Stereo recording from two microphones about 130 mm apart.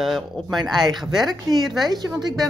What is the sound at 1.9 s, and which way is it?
Speech, 30° right (ahead or behind).